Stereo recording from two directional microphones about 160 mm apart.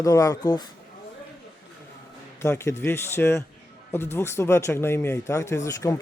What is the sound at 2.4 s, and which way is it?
Speech, 15° left (ahead or behind).